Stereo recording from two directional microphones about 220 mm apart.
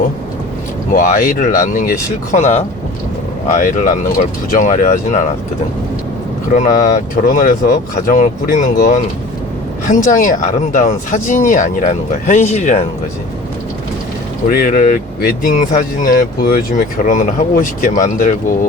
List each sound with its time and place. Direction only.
0.9 s speech: 40° left (ahead or behind)
6.5 s speech: 35° left (ahead or behind)
14.5 s speech: 40° left (ahead or behind)